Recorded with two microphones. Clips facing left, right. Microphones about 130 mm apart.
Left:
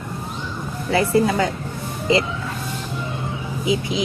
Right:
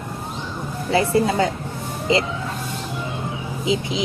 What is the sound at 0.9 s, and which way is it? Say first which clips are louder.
Speech: left 1 dB; 25° right (ahead or behind).